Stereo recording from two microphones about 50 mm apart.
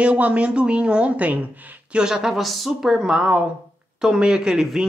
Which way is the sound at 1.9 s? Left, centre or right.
Centre.